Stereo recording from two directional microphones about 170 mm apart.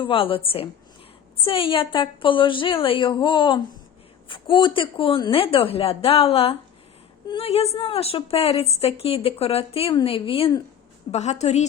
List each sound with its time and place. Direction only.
0.0 s a woman's voice: 30° left (ahead or behind)